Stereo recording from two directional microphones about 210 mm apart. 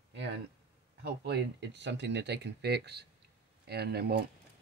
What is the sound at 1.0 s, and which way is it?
Speech, 55° right (ahead or behind).